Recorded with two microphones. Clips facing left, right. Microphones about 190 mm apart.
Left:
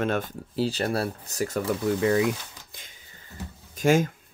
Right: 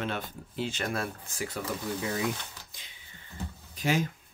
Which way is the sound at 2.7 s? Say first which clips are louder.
Left 5 dB; 55° left (ahead or behind).